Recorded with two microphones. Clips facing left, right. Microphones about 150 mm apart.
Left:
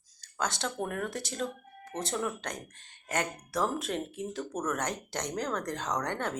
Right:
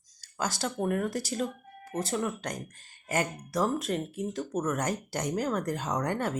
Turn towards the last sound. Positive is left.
turn(degrees=-5)  # may be behind; listen again after turning